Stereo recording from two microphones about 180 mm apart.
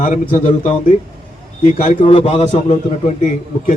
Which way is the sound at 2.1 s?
30° left (ahead or behind).